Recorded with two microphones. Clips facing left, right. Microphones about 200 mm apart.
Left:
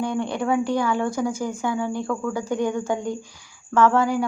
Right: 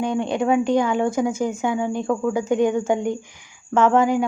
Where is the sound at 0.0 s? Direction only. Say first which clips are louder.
Right 3 dB; 15° right (ahead or behind).